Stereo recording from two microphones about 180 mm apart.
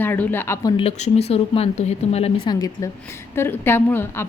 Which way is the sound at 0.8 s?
35° left (ahead or behind).